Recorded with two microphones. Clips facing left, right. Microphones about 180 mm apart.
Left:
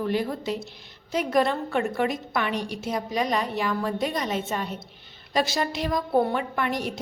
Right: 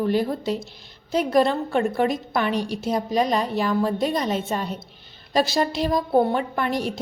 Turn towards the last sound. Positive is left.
turn(degrees=-35)  # may be behind; listen again after turning